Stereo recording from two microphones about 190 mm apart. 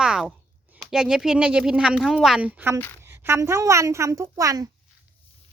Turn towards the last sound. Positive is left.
turn(degrees=-15)  # may be behind; listen again after turning